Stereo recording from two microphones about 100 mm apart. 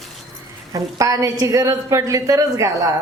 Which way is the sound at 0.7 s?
35° right (ahead or behind).